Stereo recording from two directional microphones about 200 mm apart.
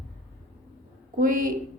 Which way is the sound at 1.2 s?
45° right (ahead or behind).